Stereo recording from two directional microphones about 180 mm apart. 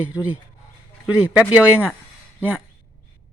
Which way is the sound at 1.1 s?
5° right (ahead or behind).